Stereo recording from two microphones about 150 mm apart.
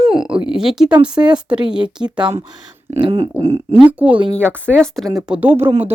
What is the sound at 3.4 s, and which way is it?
Speech, 40° right (ahead or behind).